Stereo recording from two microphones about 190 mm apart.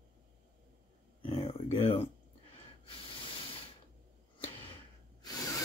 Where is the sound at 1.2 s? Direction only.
30° left (ahead or behind).